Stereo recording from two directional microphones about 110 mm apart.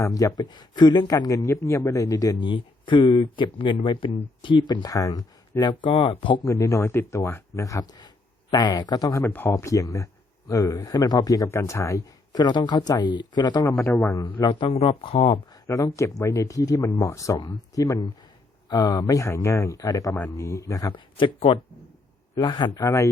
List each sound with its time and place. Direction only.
0.0 s a man's voice: 30° left (ahead or behind)
2.4 s speech: 45° left (ahead or behind)
6.4 s speech: 30° left (ahead or behind)
9.2 s a man's voice: 20° left (ahead or behind); by 13.7 s 40° left (ahead or behind)
13.7 s speech: 20° left (ahead or behind)
14.3 s speech: 45° left (ahead or behind)
14.7 s speech: 65° left (ahead or behind)
15.6 s a man's voice: 30° left (ahead or behind)
20.9 s speech: 50° left (ahead or behind)
22.4 s speech: 45° left (ahead or behind)
22.8 s speech: 25° left (ahead or behind)